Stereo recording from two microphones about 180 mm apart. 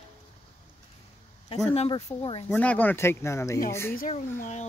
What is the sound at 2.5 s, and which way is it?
Speech, 10° left (ahead or behind).